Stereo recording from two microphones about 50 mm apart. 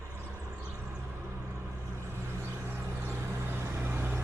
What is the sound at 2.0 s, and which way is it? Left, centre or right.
Vehicle, right.